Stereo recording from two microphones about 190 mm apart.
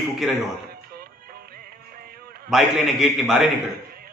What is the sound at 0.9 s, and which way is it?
Music, 55° right (ahead or behind).